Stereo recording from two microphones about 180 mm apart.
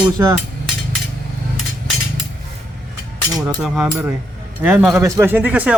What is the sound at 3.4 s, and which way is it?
Speech, 20° right (ahead or behind).